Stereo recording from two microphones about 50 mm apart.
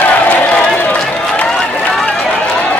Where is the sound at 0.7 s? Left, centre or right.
Left.